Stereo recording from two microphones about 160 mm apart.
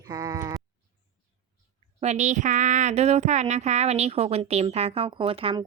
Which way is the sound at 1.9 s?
45° right (ahead or behind).